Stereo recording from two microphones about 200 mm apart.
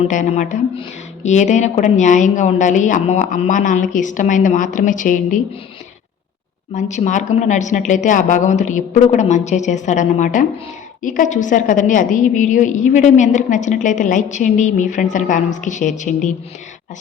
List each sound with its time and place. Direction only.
0.1 s a woman's voice: 40° left (ahead or behind)
6.7 s a woman's voice: 35° left (ahead or behind)